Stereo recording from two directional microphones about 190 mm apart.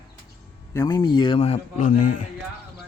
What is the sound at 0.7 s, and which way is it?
Speech, 20° left (ahead or behind).